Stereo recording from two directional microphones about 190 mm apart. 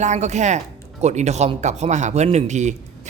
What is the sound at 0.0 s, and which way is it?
Speech, 40° right (ahead or behind).